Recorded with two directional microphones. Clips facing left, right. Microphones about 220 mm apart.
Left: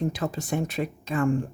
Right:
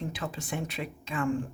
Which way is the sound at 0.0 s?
40° left (ahead or behind).